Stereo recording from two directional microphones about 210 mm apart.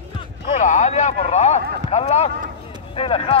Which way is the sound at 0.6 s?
35° left (ahead or behind).